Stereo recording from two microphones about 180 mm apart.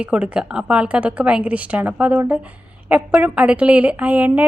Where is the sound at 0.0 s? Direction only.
5° right (ahead or behind).